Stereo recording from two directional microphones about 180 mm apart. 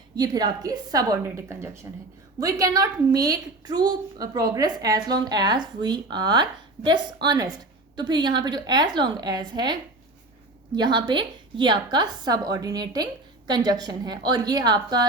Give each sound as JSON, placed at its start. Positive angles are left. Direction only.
{"t": 0.2, "sound": "a woman's voice", "side_deg": -20}
{"t": 10.8, "sound": "a woman's voice", "side_deg": -25}